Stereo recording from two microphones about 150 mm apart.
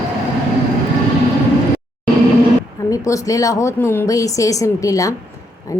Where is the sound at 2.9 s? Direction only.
20° left (ahead or behind).